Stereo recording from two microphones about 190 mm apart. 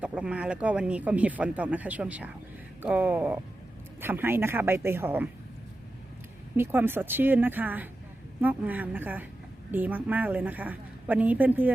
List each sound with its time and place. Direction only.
0.0 s speech: 5° right (ahead or behind)
6.6 s speech: 10° right (ahead or behind)